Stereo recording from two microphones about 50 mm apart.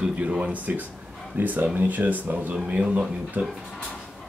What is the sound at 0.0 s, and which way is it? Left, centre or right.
Speech, right.